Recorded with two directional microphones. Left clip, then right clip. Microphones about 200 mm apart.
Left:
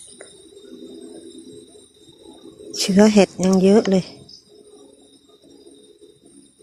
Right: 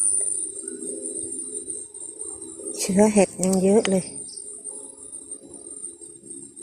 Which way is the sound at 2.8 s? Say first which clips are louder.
Left 4 dB; 30° left (ahead or behind).